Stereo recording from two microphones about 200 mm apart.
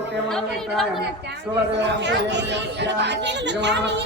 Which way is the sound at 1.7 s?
60° right (ahead or behind).